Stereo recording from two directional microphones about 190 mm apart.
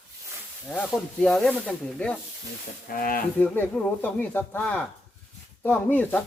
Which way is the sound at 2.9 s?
45° left (ahead or behind).